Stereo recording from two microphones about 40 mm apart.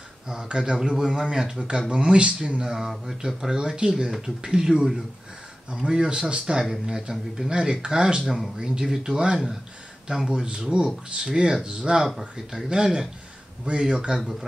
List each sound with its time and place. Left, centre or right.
0.3 s speech: centre
2.6 s speech: centre
10.4 s speech: right